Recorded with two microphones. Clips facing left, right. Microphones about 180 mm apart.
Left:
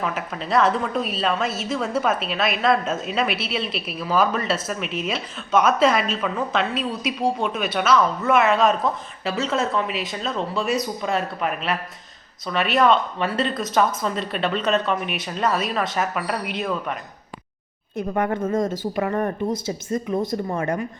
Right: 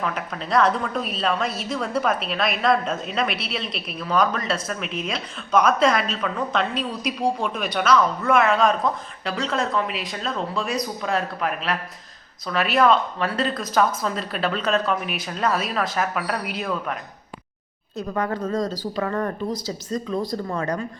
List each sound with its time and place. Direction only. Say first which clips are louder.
0.0 s a woman's voice: left 1 dB; 5° left (ahead or behind)
18.1 s speech: left 2 dB; 25° left (ahead or behind)